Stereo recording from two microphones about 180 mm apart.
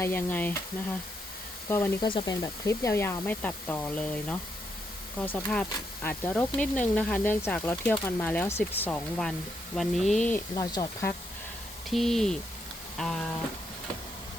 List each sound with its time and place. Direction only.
0.0 s speech: 10° left (ahead or behind)
2.0 s speech: 25° left (ahead or behind); by 10.4 s 5° left (ahead or behind)
10.5 s speech: 20° left (ahead or behind)
11.9 s speech: centre (ahead or behind)